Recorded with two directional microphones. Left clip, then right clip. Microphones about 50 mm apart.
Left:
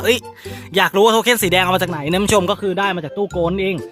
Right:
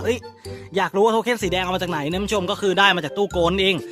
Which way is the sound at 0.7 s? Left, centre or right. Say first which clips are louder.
Left 5 dB; centre.